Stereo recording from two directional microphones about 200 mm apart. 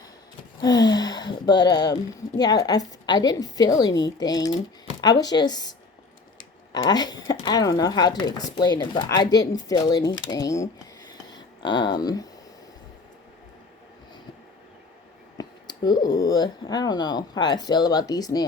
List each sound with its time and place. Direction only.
0.6 s speech: 20° left (ahead or behind)
6.7 s speech: 20° left (ahead or behind)
11.1 s a sound: 20° left (ahead or behind)
15.4 s speech: 20° left (ahead or behind)